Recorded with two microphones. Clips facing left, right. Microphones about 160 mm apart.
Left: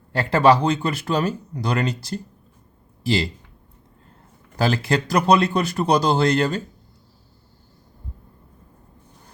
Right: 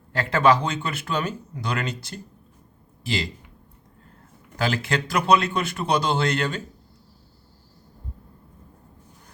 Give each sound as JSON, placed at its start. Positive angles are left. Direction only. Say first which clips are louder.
{"t": 0.1, "sound": "speech", "louder": "left 3 dB", "side_deg": 35}
{"t": 4.5, "sound": "speech", "louder": "left 4 dB", "side_deg": 35}